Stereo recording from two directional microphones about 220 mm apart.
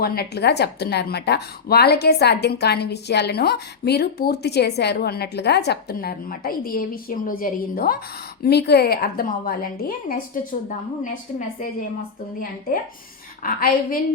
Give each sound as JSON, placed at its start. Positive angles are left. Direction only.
{"t": 0.0, "sound": "a woman's voice", "side_deg": 45}
{"t": 13.4, "sound": "a woman's voice", "side_deg": 40}